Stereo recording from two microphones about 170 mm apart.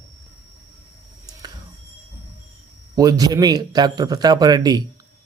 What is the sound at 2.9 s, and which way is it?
A man's voice, 20° right (ahead or behind).